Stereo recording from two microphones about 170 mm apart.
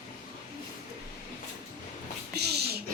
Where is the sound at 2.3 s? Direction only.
75° right (ahead or behind).